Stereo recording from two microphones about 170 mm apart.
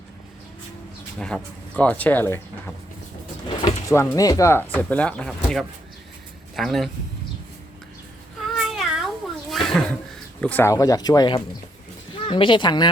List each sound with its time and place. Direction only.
1.2 s speech: 5° left (ahead or behind)
3.6 s speech: 20° left (ahead or behind); by 6.9 s centre (ahead or behind)
8.7 s cat: centre (ahead or behind)
9.5 s a sound: centre (ahead or behind)
10.4 s speech: 10° left (ahead or behind)